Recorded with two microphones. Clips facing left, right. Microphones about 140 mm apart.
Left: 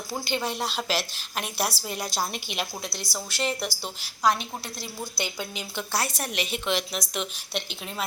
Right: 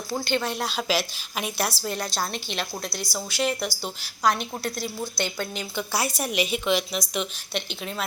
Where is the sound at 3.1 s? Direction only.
Centre (ahead or behind).